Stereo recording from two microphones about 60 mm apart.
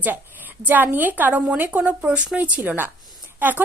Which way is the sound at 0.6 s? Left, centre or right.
Right.